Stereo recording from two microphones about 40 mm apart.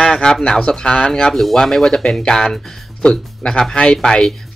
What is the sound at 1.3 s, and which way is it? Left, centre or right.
Speech, centre.